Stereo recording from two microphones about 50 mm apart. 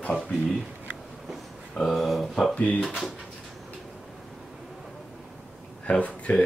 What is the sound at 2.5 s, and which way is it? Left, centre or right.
Speech, left.